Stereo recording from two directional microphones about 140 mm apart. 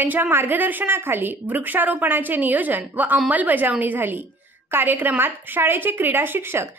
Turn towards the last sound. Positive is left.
turn(degrees=-15)  # may be behind; listen again after turning